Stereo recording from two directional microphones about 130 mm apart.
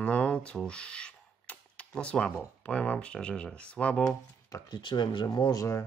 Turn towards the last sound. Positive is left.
turn(degrees=25)  # may be behind; listen again after turning